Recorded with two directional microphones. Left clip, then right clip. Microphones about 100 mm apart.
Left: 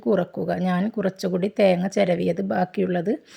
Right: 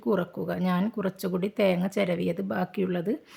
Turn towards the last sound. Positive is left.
turn(degrees=25)  # may be behind; listen again after turning